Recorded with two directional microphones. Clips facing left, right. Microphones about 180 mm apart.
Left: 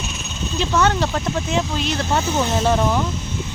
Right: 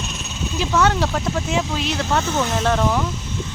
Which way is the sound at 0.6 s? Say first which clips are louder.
Even; centre (ahead or behind).